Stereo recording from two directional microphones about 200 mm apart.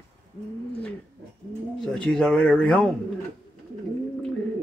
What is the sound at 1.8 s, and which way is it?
A man's voice, 5° left (ahead or behind).